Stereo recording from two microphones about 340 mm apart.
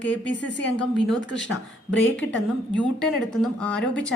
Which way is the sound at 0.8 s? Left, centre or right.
Centre.